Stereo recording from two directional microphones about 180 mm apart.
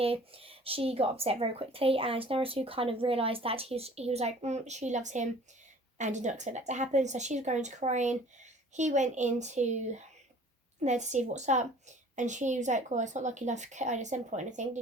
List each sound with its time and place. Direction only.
0.0 s speech: 30° right (ahead or behind)